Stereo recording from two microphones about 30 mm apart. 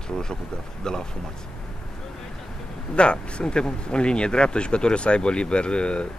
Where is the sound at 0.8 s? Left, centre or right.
Left.